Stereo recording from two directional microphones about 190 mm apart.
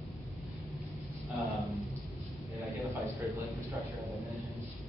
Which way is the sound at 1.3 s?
Centre (ahead or behind).